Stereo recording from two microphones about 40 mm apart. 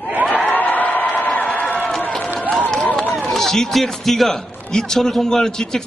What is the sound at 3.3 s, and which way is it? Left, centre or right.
A man's voice, centre.